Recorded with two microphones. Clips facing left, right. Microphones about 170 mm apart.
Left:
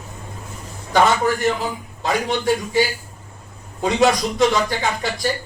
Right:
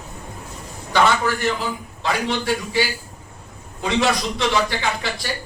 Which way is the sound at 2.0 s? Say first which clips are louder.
Left 2 dB; 45° left (ahead or behind).